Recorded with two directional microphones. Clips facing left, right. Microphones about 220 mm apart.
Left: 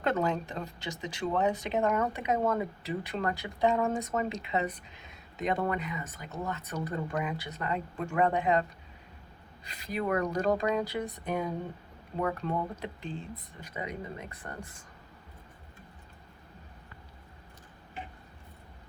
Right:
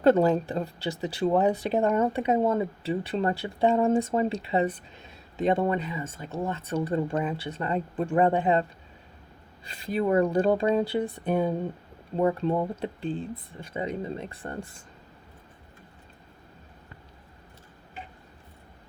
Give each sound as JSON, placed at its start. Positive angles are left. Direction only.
{"t": 0.0, "sound": "speech", "side_deg": -35}
{"t": 9.6, "sound": "speech", "side_deg": -30}